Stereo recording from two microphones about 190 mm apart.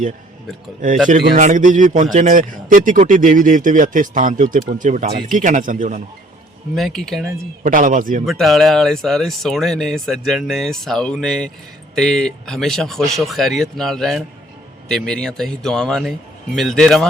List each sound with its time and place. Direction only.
1.2 s a man's voice: 45° right (ahead or behind)
6.7 s speech: centre (ahead or behind)
7.6 s a man's voice: 45° right (ahead or behind)
8.3 s speech: centre (ahead or behind)